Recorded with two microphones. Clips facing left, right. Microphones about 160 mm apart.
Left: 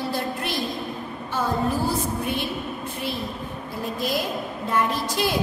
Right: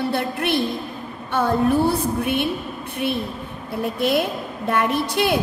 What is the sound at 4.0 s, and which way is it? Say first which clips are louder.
A woman's voice: right 6 dB; 65° right (ahead or behind).